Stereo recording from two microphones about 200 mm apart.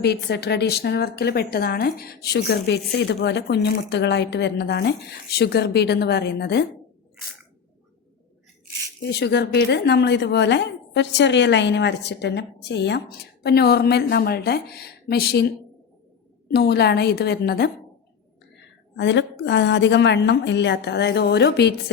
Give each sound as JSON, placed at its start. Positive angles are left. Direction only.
{"t": 0.0, "sound": "a woman's voice", "side_deg": 55}
{"t": 9.0, "sound": "a woman's voice", "side_deg": 55}
{"t": 18.9, "sound": "a woman's voice", "side_deg": 65}